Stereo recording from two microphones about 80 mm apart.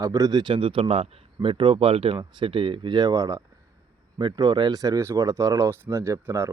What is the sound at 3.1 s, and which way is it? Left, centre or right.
Speech, right.